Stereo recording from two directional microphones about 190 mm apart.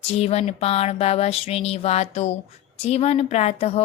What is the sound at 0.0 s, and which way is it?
Speech, 30° left (ahead or behind).